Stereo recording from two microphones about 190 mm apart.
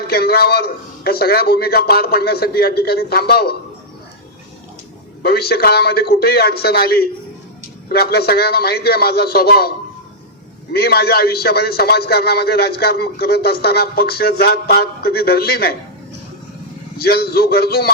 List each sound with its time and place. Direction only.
0.1 s a man's voice: 55° left (ahead or behind)
5.2 s a man's voice: 55° left (ahead or behind)
17.0 s a man's voice: 55° left (ahead or behind)